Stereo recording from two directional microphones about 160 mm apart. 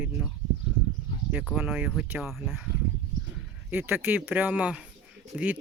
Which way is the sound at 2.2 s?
Centre (ahead or behind).